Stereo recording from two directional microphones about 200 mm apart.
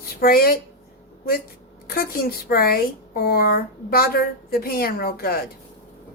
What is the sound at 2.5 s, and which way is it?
A woman's voice, 50° left (ahead or behind).